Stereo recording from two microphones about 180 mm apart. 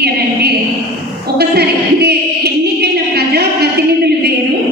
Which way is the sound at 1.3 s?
65° right (ahead or behind).